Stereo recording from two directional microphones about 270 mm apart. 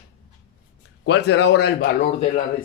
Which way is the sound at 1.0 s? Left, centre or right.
Left.